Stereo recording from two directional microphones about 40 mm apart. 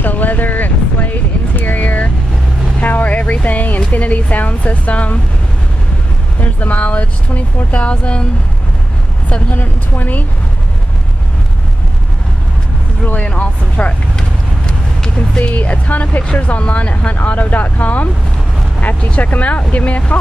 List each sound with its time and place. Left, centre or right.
0.0 s vehicle: left
2.8 s a sound: left
3.9 s speech: left
6.4 s speech: left
9.6 s a woman's voice: left
13.0 s speech: left